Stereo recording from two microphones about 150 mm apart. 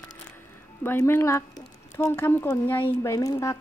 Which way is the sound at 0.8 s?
15° left (ahead or behind).